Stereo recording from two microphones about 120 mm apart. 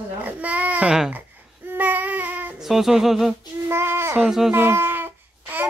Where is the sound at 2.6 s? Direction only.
5° right (ahead or behind).